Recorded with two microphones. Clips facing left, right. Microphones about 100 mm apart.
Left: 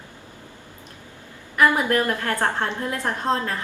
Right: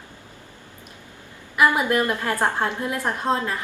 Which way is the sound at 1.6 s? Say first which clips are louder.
Even; 15° right (ahead or behind).